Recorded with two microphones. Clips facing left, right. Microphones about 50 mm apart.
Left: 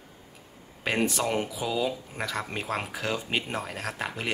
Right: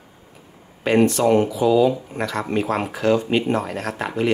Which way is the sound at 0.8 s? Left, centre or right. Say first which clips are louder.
Right 10 dB; centre.